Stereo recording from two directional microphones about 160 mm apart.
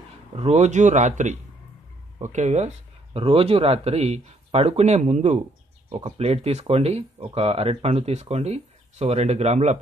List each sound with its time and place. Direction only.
0.4 s speech: 45° right (ahead or behind)